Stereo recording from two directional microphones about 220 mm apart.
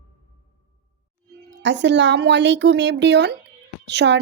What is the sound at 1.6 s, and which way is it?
Speech, 55° right (ahead or behind).